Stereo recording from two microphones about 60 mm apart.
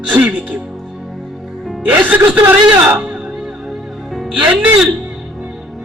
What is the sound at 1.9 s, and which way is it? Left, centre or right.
Speech, right.